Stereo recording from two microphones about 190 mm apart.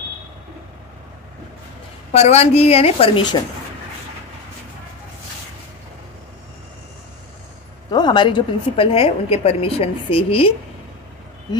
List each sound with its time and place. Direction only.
2.1 s a woman's voice: 35° left (ahead or behind)
7.9 s a woman's voice: 25° left (ahead or behind)